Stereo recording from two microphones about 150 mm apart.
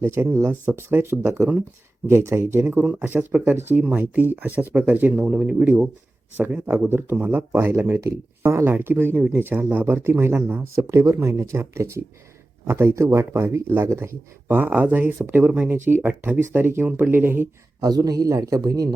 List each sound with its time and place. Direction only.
0.0 s speech: 15° right (ahead or behind)